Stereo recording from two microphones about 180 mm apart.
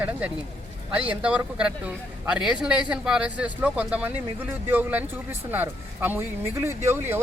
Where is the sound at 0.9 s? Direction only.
5° right (ahead or behind).